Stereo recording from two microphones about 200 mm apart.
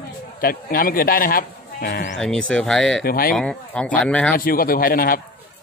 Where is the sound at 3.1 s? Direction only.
45° left (ahead or behind).